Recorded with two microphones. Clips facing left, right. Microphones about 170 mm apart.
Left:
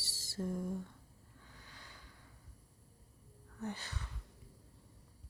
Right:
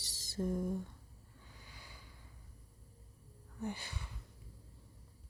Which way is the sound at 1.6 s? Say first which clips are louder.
Right 1 dB; 10° right (ahead or behind).